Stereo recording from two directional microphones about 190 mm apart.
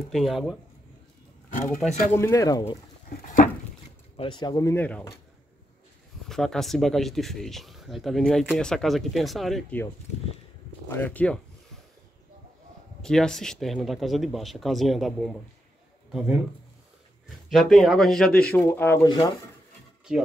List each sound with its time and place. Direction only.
0.1 s speech: centre (ahead or behind)
1.6 s speech: centre (ahead or behind)
2.1 s speech: 15° left (ahead or behind)
4.2 s speech: 25° left (ahead or behind)
6.2 s speech: centre (ahead or behind)
10.9 s speech: 10° left (ahead or behind)
13.0 s speech: 5° left (ahead or behind)
17.5 s speech: centre (ahead or behind)
19.0 s speech: 20° left (ahead or behind)
20.1 s speech: 5° right (ahead or behind)